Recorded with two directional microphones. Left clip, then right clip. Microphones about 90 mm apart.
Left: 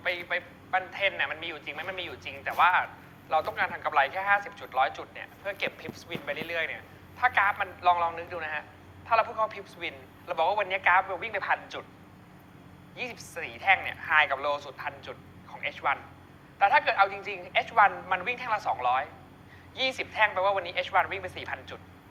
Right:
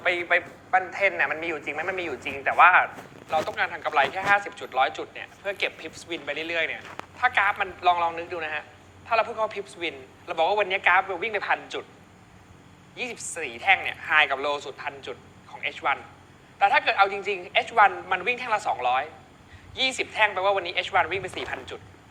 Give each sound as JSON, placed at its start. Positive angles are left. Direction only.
{"t": 0.0, "sound": "a man's voice", "side_deg": 50}
{"t": 0.7, "sound": "speech", "side_deg": 35}
{"t": 3.2, "sound": "speech", "side_deg": 35}
{"t": 13.0, "sound": "speech", "side_deg": 35}